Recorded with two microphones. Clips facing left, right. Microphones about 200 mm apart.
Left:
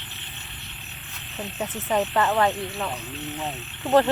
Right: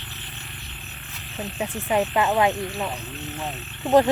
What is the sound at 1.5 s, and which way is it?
Speech, 10° right (ahead or behind).